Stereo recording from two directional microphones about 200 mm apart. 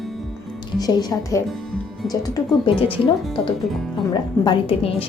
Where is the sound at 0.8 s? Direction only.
15° left (ahead or behind).